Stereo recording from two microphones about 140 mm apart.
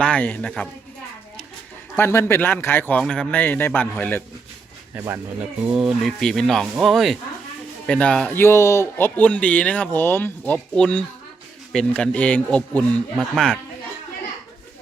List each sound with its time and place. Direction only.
0.0 s speech: 10° left (ahead or behind)
2.0 s speech: 15° left (ahead or behind)
4.9 s speech: 10° right (ahead or behind); by 8.4 s 5° left (ahead or behind)
8.4 s speech: 20° left (ahead or behind); by 13.6 s 5° left (ahead or behind)